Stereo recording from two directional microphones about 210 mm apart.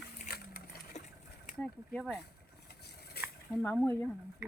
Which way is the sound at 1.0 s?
30° left (ahead or behind).